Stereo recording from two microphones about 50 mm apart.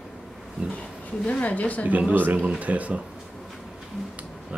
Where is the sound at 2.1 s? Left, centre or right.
Right.